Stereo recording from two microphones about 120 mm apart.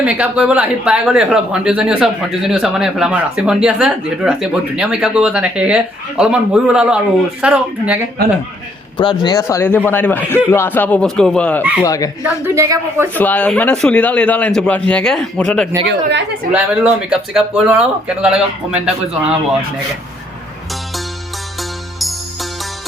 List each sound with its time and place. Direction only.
0.0 s speech: 10° right (ahead or behind)
9.0 s a man's voice: 40° left (ahead or behind)
9.4 s speech: 25° left (ahead or behind)
9.6 s a man's voice: 15° left (ahead or behind)
11.6 s speech: 10° right (ahead or behind)
11.9 s a man's voice: 30° left (ahead or behind)
12.5 s a woman's voice: 25° right (ahead or behind)
13.1 s a man's voice: 15° left (ahead or behind)
16.7 s speech: 5° right (ahead or behind)